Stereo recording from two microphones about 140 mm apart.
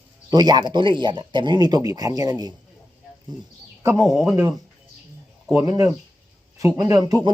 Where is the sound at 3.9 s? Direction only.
Centre (ahead or behind).